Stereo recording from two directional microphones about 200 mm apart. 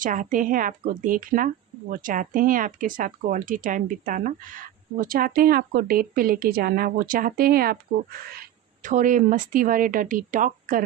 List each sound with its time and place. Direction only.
0.0 s a woman's voice: 40° right (ahead or behind)